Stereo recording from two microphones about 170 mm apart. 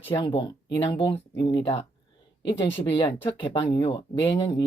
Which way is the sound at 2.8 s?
30° left (ahead or behind).